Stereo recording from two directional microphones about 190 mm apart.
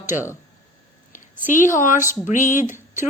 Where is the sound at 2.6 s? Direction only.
10° right (ahead or behind).